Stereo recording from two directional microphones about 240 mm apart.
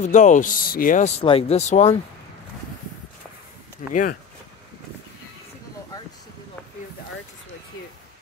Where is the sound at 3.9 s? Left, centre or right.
Left.